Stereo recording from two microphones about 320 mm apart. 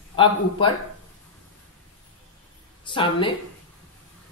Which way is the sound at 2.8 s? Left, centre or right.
Centre.